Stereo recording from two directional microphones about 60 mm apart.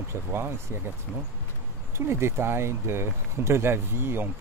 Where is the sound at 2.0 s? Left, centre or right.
Right.